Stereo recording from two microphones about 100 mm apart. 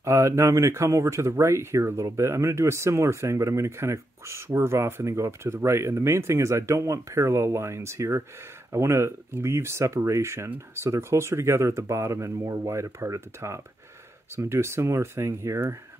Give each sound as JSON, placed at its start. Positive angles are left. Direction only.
{"t": 0.0, "sound": "speech", "side_deg": -30}